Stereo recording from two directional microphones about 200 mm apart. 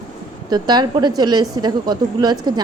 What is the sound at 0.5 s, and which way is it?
A woman's voice, 20° right (ahead or behind).